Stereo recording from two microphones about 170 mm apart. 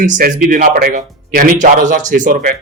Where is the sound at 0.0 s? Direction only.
50° right (ahead or behind).